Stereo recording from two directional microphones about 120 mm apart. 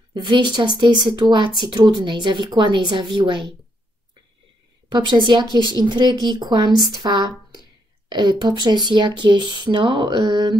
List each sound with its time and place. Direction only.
0.1 s speech: 40° right (ahead or behind)
4.9 s speech: 40° right (ahead or behind)